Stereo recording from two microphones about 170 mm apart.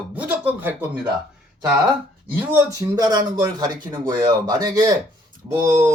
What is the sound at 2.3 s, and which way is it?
A man's voice, 15° right (ahead or behind).